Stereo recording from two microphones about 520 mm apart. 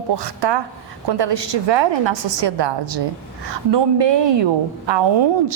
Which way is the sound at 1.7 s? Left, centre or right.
Right.